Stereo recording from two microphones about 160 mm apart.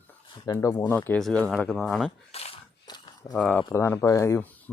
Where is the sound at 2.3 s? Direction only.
40° left (ahead or behind).